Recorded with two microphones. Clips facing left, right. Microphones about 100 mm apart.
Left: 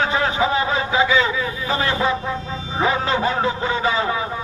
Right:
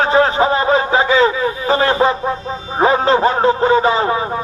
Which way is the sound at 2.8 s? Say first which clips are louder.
Right 7 dB; 40° right (ahead or behind).